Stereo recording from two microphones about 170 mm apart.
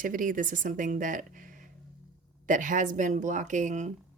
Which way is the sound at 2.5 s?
50° right (ahead or behind).